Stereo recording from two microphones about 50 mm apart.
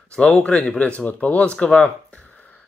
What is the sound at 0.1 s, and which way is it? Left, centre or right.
Speech, left.